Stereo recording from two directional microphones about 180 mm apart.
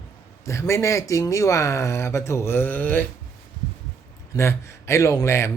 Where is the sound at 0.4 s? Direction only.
15° left (ahead or behind).